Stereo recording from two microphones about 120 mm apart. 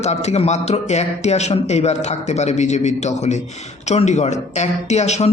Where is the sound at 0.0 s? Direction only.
65° left (ahead or behind).